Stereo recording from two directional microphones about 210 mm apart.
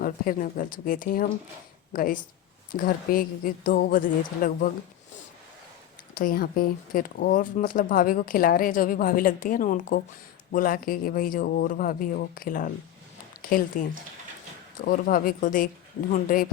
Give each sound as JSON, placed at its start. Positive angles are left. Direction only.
{"t": 0.0, "sound": "speech", "side_deg": 40}
{"t": 6.1, "sound": "speech", "side_deg": 45}